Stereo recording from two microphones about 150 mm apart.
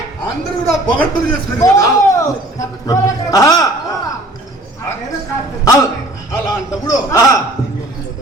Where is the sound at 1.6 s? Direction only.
20° left (ahead or behind).